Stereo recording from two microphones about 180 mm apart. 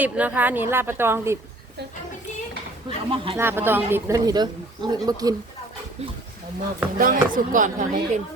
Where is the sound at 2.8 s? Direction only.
30° right (ahead or behind).